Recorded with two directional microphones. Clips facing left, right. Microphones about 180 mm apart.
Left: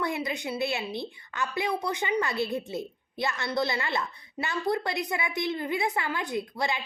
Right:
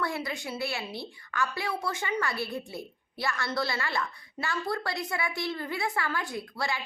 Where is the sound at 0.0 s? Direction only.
20° left (ahead or behind).